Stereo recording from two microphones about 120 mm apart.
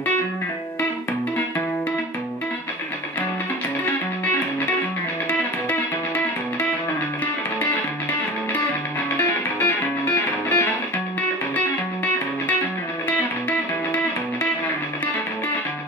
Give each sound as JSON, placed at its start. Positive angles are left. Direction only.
{"t": 4.3, "sound": "music", "side_deg": 15}
{"t": 9.6, "sound": "music", "side_deg": 15}